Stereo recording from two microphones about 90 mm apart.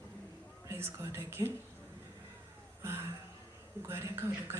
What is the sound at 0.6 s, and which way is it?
Speech, 30° right (ahead or behind).